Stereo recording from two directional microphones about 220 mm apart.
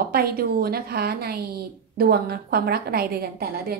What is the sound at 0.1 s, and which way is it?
A woman's voice, 45° right (ahead or behind).